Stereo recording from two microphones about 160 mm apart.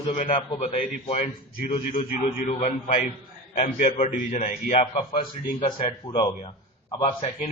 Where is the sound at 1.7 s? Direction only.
50° left (ahead or behind).